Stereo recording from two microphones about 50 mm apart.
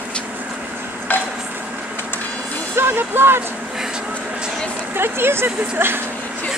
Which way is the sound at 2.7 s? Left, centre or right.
Right.